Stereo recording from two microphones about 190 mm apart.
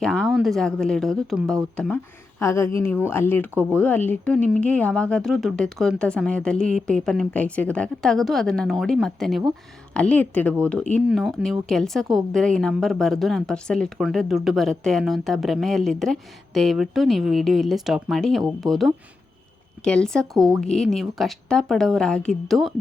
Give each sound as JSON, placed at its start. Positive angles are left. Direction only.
{"t": 0.0, "sound": "a woman's voice", "side_deg": 5}
{"t": 2.4, "sound": "speech", "side_deg": 15}
{"t": 3.5, "sound": "speech", "side_deg": -10}
{"t": 3.8, "sound": "a woman's voice", "side_deg": 10}